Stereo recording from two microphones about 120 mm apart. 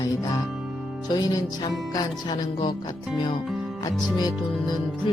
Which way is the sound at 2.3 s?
45° left (ahead or behind).